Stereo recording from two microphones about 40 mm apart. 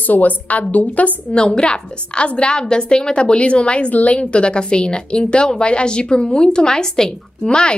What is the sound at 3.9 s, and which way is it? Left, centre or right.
Speech, left.